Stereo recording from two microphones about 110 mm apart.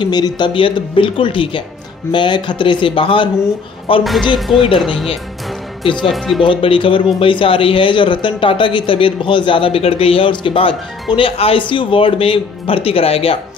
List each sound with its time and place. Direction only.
0.0 s speech: 40° left (ahead or behind)
4.0 s speech: centre (ahead or behind)
6.0 s speech: centre (ahead or behind)
6.4 s speech: 50° left (ahead or behind)